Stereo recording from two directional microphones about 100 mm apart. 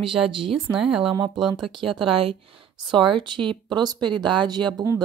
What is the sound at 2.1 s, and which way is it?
Speech, 65° right (ahead or behind).